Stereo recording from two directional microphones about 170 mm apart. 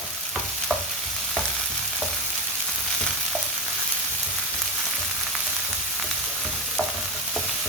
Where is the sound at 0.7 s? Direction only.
5° right (ahead or behind).